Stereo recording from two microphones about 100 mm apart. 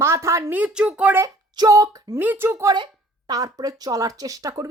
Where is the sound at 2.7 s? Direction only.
45° right (ahead or behind).